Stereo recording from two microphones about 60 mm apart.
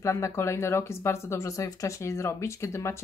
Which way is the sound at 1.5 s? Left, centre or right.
Left.